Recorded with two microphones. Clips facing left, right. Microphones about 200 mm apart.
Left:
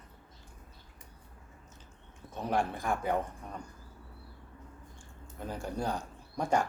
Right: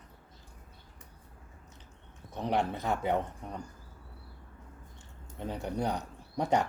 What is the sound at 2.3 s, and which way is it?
Speech, 20° right (ahead or behind).